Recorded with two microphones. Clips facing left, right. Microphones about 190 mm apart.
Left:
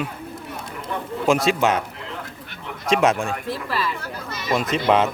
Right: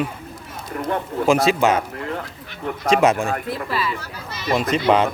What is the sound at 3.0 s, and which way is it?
Speech, centre (ahead or behind).